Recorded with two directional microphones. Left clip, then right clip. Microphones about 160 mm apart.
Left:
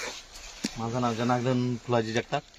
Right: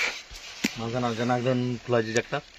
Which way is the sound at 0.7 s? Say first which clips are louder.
Left 2 dB; 20° left (ahead or behind).